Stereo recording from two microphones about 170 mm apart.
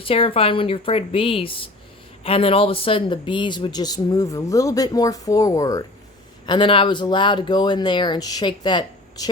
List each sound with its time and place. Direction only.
0.0 s speech: 30° left (ahead or behind)